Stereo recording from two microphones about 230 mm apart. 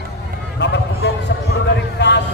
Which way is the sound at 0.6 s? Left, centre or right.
Left.